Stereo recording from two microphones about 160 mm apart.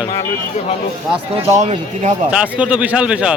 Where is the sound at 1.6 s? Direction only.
45° right (ahead or behind).